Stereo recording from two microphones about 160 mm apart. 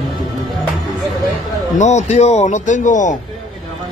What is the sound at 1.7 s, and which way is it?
Speech, 45° left (ahead or behind).